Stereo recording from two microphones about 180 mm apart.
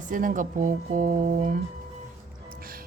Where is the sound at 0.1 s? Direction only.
45° right (ahead or behind).